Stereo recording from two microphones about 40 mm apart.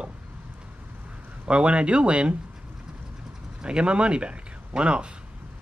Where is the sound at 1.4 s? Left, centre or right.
Right.